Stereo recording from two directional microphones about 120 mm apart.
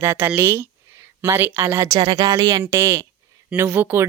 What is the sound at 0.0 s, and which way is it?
A woman's voice, 20° right (ahead or behind).